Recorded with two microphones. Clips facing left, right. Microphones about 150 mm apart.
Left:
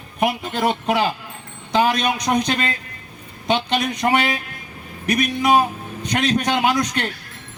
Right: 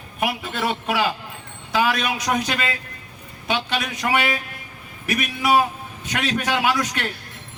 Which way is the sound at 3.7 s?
40° left (ahead or behind).